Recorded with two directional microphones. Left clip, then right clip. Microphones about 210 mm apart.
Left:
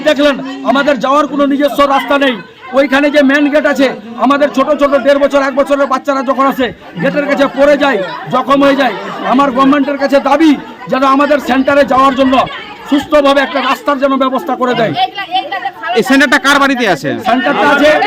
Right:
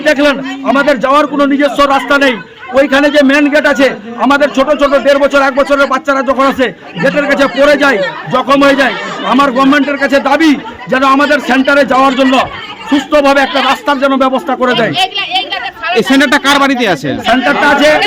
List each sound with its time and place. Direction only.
0.0 s a man's voice: centre (ahead or behind)
14.9 s a child's voice: 20° right (ahead or behind)
16.0 s a man's voice: centre (ahead or behind)